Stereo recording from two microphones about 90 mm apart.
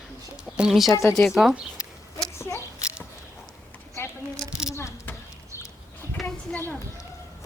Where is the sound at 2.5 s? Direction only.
30° left (ahead or behind).